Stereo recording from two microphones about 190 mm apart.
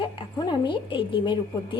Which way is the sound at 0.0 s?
25° left (ahead or behind).